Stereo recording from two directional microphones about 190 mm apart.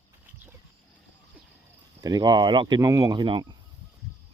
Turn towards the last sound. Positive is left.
turn(degrees=-25)  # may be behind; listen again after turning